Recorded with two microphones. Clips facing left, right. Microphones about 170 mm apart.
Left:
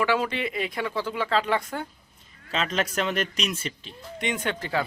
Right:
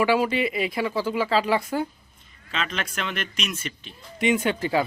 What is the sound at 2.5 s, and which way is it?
Speech, 40° left (ahead or behind).